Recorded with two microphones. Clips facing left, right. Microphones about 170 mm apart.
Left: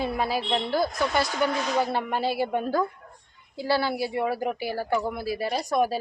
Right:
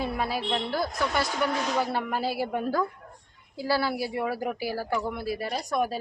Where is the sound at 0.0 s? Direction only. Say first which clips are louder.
Left 2 dB; centre (ahead or behind).